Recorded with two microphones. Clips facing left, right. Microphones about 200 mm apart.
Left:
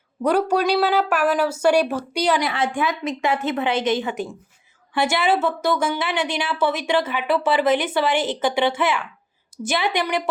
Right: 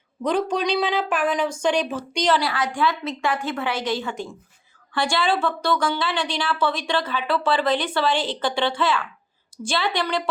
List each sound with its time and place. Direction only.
0.3 s speech: 10° left (ahead or behind)
2.4 s speech: 20° left (ahead or behind)
8.7 s speech: 20° left (ahead or behind)